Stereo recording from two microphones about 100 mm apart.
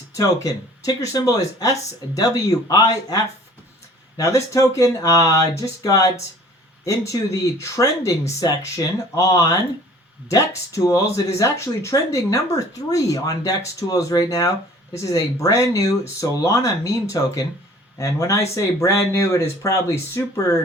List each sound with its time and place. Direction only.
0.2 s speech: 35° left (ahead or behind)
4.2 s speech: 30° left (ahead or behind)